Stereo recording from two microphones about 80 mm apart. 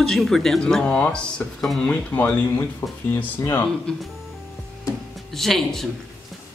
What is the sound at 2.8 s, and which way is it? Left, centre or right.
Speech, left.